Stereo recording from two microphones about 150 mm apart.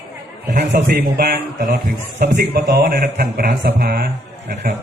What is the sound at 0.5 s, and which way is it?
A man's voice, 80° right.